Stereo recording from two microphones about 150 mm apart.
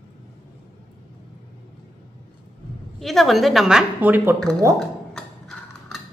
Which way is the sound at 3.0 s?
Centre (ahead or behind).